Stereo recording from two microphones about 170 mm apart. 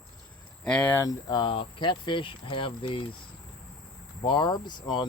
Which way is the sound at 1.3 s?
30° left (ahead or behind).